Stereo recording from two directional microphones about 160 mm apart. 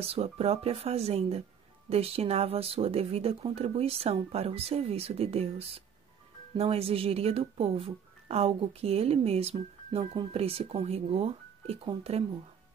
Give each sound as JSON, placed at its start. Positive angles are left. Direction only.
{"t": 0.0, "sound": "speech", "side_deg": -40}